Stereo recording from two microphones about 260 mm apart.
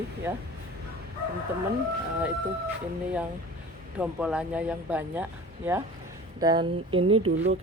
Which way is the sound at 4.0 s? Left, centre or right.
Centre.